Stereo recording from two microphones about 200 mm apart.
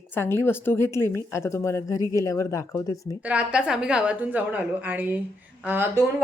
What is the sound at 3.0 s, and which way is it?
A woman's voice, 5° right (ahead or behind).